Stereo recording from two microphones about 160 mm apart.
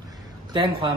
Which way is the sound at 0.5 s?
30° right (ahead or behind).